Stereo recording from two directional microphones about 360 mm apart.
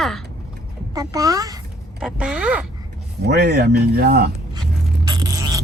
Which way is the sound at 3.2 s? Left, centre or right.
Right.